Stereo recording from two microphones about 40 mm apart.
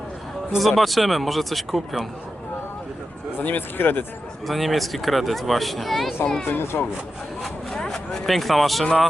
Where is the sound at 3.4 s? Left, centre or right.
Left.